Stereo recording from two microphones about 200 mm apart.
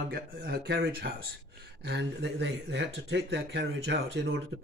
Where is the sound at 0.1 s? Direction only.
50° right (ahead or behind).